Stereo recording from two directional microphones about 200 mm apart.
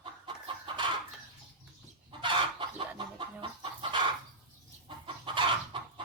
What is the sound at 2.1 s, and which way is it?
Chicken, 25° right (ahead or behind).